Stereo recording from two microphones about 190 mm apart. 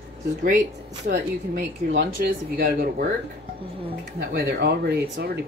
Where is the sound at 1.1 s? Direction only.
60° right (ahead or behind).